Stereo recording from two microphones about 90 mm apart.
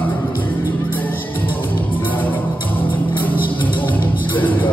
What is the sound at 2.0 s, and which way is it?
Music, 20° left (ahead or behind).